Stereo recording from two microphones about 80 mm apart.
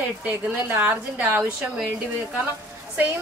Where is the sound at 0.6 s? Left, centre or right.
Right.